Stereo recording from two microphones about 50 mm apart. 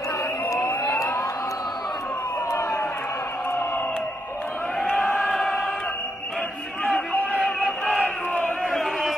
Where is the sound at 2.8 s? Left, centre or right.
Left.